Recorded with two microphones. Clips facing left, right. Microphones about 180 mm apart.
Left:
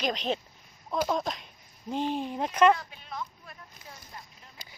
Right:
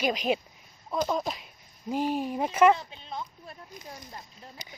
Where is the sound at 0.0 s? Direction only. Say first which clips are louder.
Right 3 dB; 10° right (ahead or behind).